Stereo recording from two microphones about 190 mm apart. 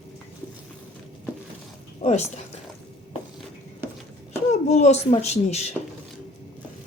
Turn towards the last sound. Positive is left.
turn(degrees=35)  # may be behind; listen again after turning